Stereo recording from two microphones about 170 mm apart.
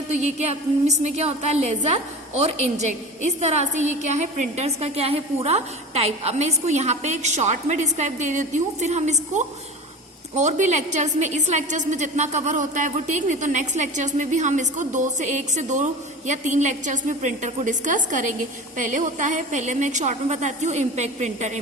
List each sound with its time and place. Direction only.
0.1 s a woman's voice: 45° right (ahead or behind)